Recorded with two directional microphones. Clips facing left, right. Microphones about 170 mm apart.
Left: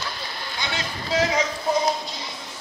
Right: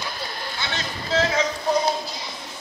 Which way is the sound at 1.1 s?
15° left (ahead or behind).